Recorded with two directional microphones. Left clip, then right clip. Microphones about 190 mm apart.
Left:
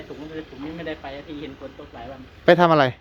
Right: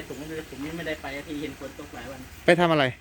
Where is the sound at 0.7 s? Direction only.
50° right (ahead or behind).